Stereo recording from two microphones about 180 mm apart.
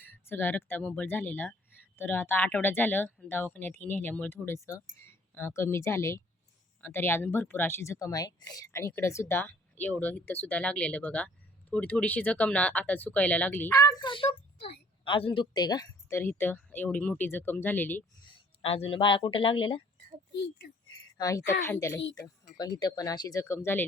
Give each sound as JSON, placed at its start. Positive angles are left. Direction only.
{"t": 0.0, "sound": "speech", "side_deg": 10}
{"t": 18.6, "sound": "speech", "side_deg": 30}
{"t": 21.2, "sound": "speech", "side_deg": 20}